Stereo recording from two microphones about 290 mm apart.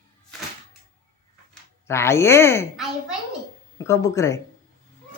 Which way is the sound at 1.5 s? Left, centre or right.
Centre.